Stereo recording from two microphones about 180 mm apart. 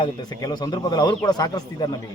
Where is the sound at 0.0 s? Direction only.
20° left (ahead or behind).